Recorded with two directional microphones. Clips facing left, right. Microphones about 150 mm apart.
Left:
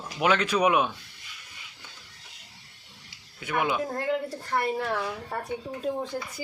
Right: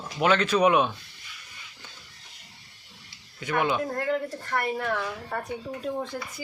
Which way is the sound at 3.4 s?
10° left (ahead or behind).